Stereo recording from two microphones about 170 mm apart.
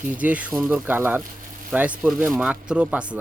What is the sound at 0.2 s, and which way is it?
Speech, 10° right (ahead or behind).